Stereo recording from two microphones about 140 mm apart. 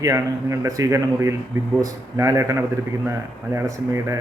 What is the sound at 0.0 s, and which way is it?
Speech, 20° right (ahead or behind).